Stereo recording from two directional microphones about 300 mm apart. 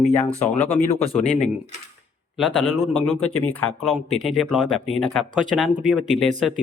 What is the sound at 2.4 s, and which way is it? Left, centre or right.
Speech, centre.